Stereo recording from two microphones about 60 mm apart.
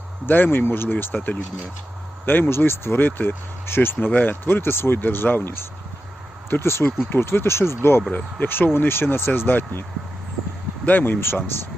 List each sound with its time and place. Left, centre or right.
0.3 s speech: left
6.8 s speech: left
7.2 s speech: left
10.8 s speech: left